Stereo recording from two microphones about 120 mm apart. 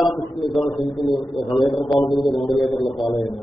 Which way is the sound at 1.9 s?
Centre (ahead or behind).